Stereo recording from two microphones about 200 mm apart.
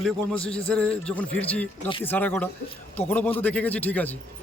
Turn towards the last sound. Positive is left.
turn(degrees=10)  # may be behind; listen again after turning